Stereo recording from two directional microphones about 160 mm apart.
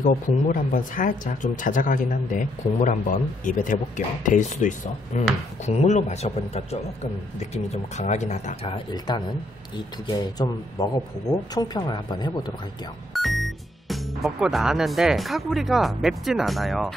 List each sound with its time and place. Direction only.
0.0 s a man's voice: 55° left (ahead or behind); by 12.3 s 25° left (ahead or behind)
13.1 s speech: centre (ahead or behind)